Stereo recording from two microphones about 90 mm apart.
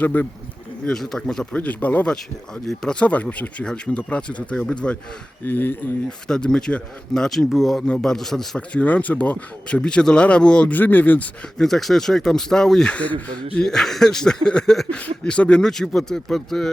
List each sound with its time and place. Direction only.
0.0 s speech: 20° left (ahead or behind)
0.9 s speech: 5° left (ahead or behind)
1.5 s a man's voice: 15° left (ahead or behind)
6.1 s a man's voice: 10° left (ahead or behind)
11.5 s speech: 5° left (ahead or behind)